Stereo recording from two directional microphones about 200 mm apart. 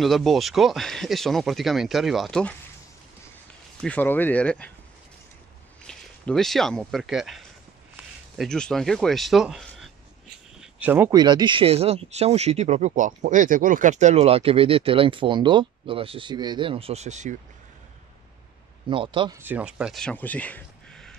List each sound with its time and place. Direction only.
0.0 s speech: centre (ahead or behind)
3.8 s speech: 10° left (ahead or behind)
5.9 s speech: 5° left (ahead or behind)
10.6 s a sound: 10° right (ahead or behind)
11.1 s speech: 20° right (ahead or behind)
18.9 s speech: 25° right (ahead or behind)
19.4 s speech: 5° right (ahead or behind)